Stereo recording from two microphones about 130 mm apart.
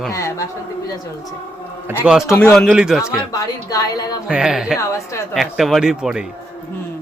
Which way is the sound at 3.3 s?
30° left (ahead or behind).